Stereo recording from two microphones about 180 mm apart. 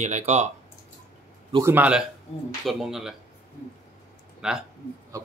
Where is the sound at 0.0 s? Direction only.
40° right (ahead or behind).